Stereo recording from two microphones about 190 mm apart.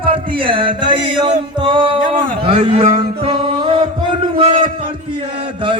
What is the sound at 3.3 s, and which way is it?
Music, 25° right (ahead or behind).